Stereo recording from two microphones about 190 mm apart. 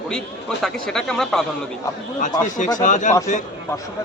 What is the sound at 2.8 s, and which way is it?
Speech, 40° left (ahead or behind).